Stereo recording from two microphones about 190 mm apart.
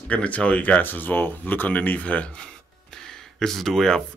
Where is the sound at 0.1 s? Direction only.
5° left (ahead or behind).